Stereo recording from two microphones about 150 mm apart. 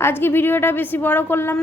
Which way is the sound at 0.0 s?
15° left (ahead or behind).